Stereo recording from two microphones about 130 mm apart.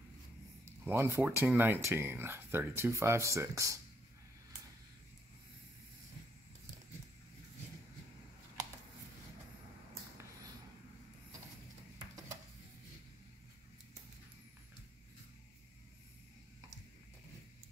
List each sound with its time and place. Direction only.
0.8 s speech: 20° right (ahead or behind)